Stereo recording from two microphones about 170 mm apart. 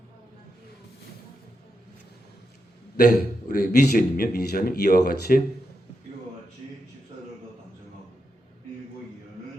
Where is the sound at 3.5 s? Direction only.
50° left (ahead or behind).